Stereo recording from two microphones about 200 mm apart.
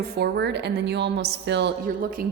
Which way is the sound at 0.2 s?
60° right (ahead or behind).